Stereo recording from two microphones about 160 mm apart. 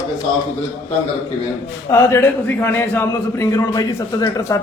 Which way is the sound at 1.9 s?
15° left (ahead or behind).